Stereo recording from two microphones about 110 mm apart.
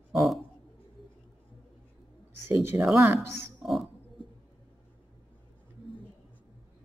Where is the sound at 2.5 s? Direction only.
20° right (ahead or behind).